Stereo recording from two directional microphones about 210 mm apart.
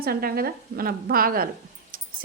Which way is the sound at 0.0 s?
45° right (ahead or behind).